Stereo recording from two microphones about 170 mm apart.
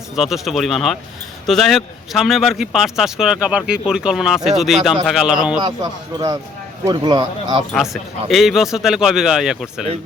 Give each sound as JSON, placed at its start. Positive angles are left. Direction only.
{"t": 0.2, "sound": "a man's voice", "side_deg": 0}
{"t": 5.6, "sound": "speech", "side_deg": -25}
{"t": 8.3, "sound": "a man's voice", "side_deg": 0}